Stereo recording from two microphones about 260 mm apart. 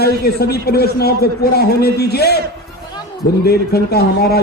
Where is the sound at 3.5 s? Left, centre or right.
Left.